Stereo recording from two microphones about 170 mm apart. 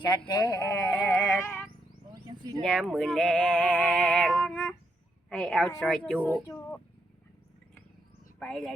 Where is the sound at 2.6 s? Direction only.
5° left (ahead or behind).